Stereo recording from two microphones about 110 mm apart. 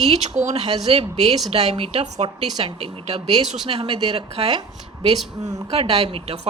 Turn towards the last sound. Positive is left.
turn(degrees=-65)  # may be behind; listen again after turning